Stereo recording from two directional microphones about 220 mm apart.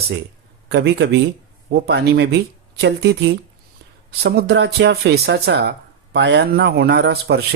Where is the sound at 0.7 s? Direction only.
50° right (ahead or behind).